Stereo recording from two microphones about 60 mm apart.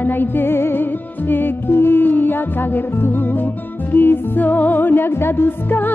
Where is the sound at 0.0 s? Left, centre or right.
Left.